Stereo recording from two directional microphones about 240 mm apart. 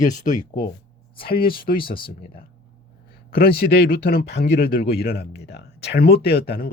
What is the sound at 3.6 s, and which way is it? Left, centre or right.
Speech, left.